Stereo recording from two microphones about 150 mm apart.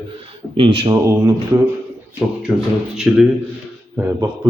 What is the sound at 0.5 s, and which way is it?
Speech, 35° right (ahead or behind).